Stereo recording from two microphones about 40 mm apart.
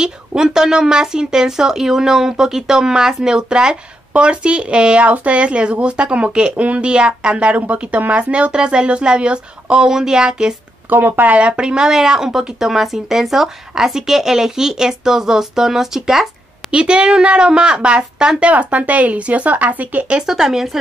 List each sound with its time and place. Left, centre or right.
0.0 s speech: centre
10.9 s speech: right
11.3 s speech: right; by 16.3 s centre
16.7 s speech: right
18.4 s speech: right
20.2 s speech: centre